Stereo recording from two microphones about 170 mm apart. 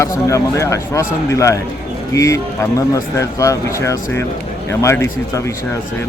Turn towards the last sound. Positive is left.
turn(degrees=15)  # may be behind; listen again after turning